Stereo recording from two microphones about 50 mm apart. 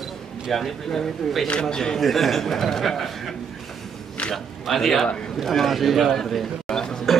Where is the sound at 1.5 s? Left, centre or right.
Centre.